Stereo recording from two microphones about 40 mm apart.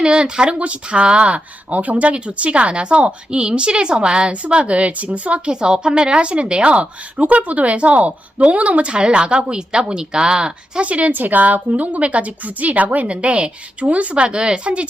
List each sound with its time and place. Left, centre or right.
0.0 s speech: right
5.5 s a woman's voice: centre
10.8 s a woman's voice: right